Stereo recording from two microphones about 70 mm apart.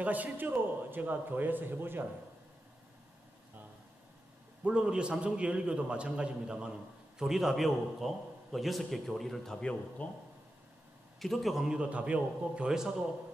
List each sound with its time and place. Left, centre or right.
0.0 s a man's voice: right
4.6 s a man's voice: centre
11.1 s a man's voice: centre